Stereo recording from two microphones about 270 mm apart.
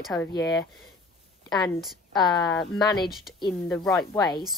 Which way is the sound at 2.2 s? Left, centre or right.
Centre.